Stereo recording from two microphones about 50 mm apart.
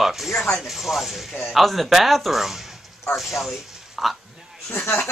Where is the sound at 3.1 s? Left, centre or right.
Centre.